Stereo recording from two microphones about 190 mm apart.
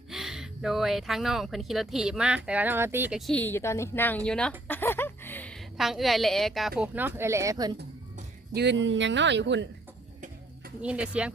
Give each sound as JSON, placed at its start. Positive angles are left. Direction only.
{"t": 0.1, "sound": "speech", "side_deg": 0}
{"t": 3.2, "sound": "speech", "side_deg": 5}
{"t": 8.5, "sound": "speech", "side_deg": -65}
{"t": 10.8, "sound": "speech", "side_deg": -5}